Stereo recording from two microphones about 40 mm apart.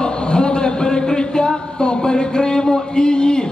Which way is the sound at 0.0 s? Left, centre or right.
Left.